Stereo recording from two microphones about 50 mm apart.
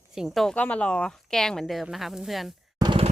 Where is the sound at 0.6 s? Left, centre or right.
Left.